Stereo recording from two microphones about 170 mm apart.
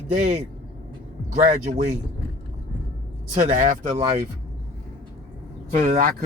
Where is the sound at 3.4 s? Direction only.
50° right (ahead or behind).